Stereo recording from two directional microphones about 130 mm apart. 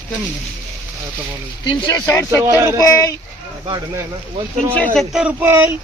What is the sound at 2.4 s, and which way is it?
Speech, 20° right (ahead or behind).